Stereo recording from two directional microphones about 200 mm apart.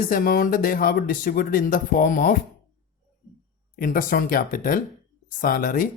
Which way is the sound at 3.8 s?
40° left (ahead or behind).